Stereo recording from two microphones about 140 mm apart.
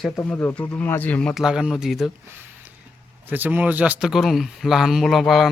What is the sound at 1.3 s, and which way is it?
Speech, 5° right (ahead or behind).